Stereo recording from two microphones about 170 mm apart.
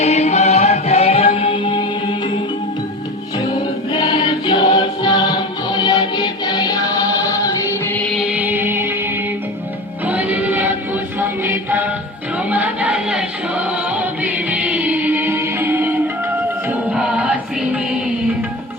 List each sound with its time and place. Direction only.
0.0 s music: 40° left (ahead or behind)
3.9 s music: 25° left (ahead or behind)
7.9 s music: 10° left (ahead or behind)
8.2 s music: 10° right (ahead or behind)
10.1 s music: 10° right (ahead or behind)